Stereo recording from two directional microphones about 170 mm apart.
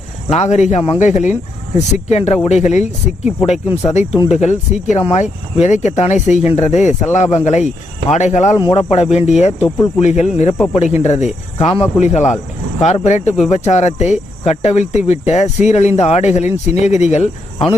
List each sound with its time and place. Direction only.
0.3 s cricket: 40° left (ahead or behind)
0.9 s speech: 45° left (ahead or behind)
8.1 s cricket: 40° left (ahead or behind)
8.5 s cricket: 30° left (ahead or behind)
9.6 s speech: 20° left (ahead or behind)
10.0 s cricket: 40° left (ahead or behind)
11.0 s speech: 45° left (ahead or behind)
11.6 s cricket: 35° left (ahead or behind)